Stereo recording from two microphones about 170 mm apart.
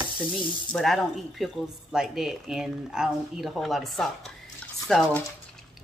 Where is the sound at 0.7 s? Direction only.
Centre (ahead or behind).